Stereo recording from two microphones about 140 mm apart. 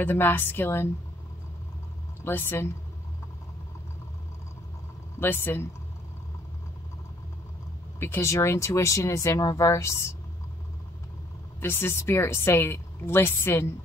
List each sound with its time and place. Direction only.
0.0 s a woman's voice: 15° left (ahead or behind)
2.2 s a woman's voice: 15° left (ahead or behind)
5.2 s a woman's voice: 15° left (ahead or behind)
8.0 s speech: 20° left (ahead or behind)
11.6 s a woman's voice: 15° left (ahead or behind)